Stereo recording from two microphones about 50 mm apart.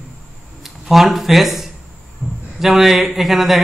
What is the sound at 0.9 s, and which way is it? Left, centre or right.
A man's voice, centre.